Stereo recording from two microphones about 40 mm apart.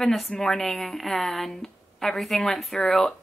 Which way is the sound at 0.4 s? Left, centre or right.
Centre.